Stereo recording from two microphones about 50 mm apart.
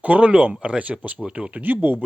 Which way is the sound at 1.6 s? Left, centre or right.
Right.